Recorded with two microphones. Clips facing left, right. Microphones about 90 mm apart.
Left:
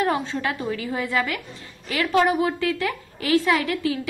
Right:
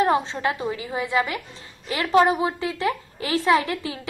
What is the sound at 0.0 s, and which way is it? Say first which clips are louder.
A woman's voice: right 2 dB; 25° right (ahead or behind).